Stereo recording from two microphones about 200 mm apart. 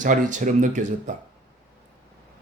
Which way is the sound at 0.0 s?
40° right (ahead or behind).